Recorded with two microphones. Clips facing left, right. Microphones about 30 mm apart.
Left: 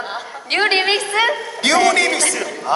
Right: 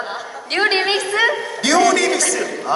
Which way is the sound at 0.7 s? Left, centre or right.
Left.